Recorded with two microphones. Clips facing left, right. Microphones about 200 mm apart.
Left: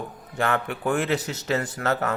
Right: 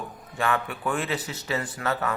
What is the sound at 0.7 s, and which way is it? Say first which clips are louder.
Speech: left 4 dB; 65° left (ahead or behind).